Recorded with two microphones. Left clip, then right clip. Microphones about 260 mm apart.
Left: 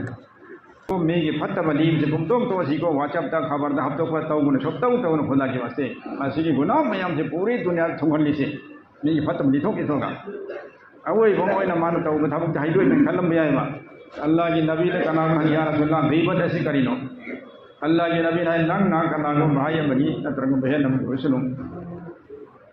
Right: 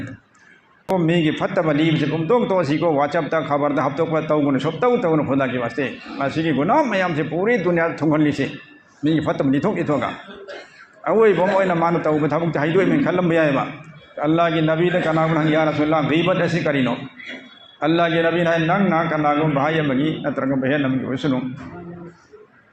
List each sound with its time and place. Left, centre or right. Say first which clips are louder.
1.0 s a man's voice: right 1 dB; right